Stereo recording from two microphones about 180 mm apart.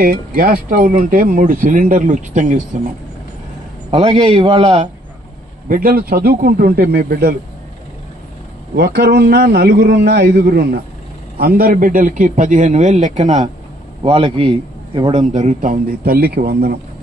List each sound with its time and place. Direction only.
0.0 s speech: 50° right (ahead or behind)
3.9 s a man's voice: 35° right (ahead or behind)
5.7 s a man's voice: 50° right (ahead or behind)
8.7 s a man's voice: 65° right (ahead or behind)